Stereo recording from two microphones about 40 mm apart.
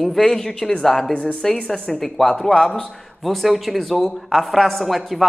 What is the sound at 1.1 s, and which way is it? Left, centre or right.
Speech, left.